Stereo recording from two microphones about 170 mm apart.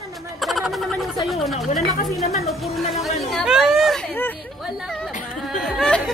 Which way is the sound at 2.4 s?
Centre (ahead or behind).